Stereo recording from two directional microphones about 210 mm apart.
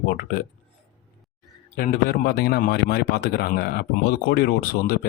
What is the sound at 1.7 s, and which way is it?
Speech, 45° left (ahead or behind).